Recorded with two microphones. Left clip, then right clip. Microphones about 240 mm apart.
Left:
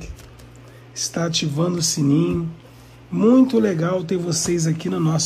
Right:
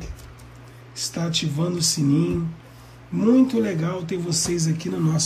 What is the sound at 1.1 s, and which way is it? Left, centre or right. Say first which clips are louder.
Speech: left 4 dB; centre.